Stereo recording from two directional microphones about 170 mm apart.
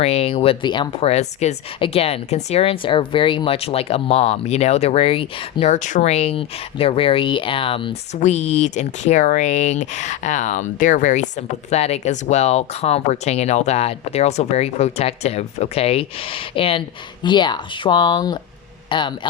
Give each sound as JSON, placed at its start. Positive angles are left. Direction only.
{"t": 0.0, "sound": "speech", "side_deg": 35}
{"t": 8.1, "sound": "speech", "side_deg": 40}